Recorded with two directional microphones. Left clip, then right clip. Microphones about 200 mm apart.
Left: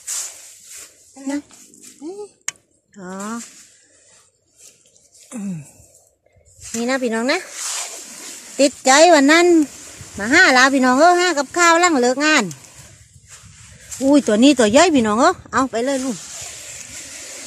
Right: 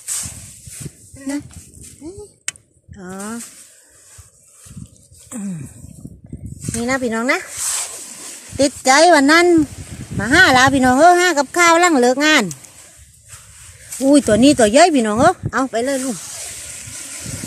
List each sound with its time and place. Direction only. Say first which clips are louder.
2.9 s speech: left 1 dB; centre (ahead or behind)
6.7 s speech: right 1 dB; centre (ahead or behind)
8.8 s speech: even; centre (ahead or behind)
13.9 s speech: right 2 dB; centre (ahead or behind)
16.2 s snake: right 2 dB; 35° right (ahead or behind)